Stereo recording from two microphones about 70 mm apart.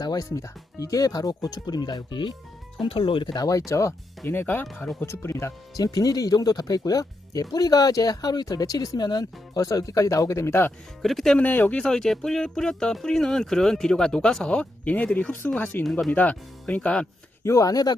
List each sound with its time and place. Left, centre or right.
0.0 s music: left
0.3 s speech: left
3.3 s speech: left
3.7 s speech: left
4.3 s speech: left
9.6 s speech: left
11.0 s speech: centre
11.3 s speech: left
11.8 s speech: centre; by 15.8 s left
15.8 s speech: centre
16.1 s speech: left
17.4 s speech: left